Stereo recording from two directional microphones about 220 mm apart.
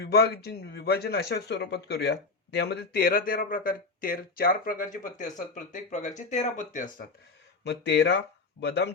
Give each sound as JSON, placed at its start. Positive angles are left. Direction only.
{"t": 0.0, "sound": "speech", "side_deg": 45}
{"t": 7.6, "sound": "speech", "side_deg": 50}